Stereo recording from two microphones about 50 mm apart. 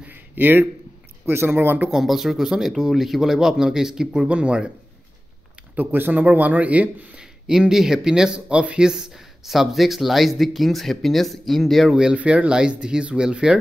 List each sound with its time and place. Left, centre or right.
0.1 s a sound: right
1.2 s speech: right
1.9 s speech: centre
4.3 s speech: right
5.8 s speech: right
7.2 s speech: centre
9.5 s speech: centre
11.9 s speech: centre